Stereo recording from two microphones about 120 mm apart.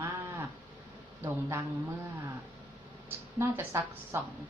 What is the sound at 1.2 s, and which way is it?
Speech, 25° right (ahead or behind).